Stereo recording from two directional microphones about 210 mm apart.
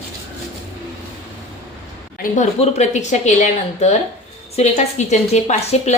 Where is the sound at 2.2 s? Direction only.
35° left (ahead or behind).